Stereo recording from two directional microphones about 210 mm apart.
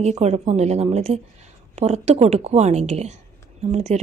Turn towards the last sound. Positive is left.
turn(degrees=-35)  # may be behind; listen again after turning